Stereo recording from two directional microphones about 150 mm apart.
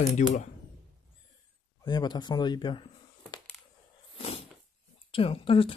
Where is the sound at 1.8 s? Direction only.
30° left (ahead or behind).